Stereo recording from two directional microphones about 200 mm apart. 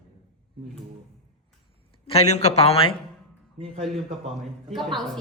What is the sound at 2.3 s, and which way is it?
Speech, 35° left (ahead or behind).